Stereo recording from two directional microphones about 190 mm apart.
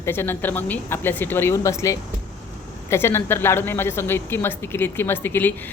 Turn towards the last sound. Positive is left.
turn(degrees=10)  # may be behind; listen again after turning